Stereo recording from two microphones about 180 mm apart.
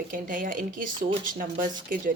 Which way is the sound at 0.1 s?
50° right (ahead or behind).